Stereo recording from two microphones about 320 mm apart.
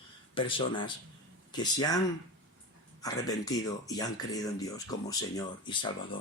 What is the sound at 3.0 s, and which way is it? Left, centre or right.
A man's voice, centre.